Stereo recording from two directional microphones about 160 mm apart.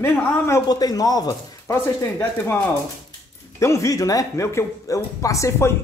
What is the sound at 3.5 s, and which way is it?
Speech, 20° left (ahead or behind).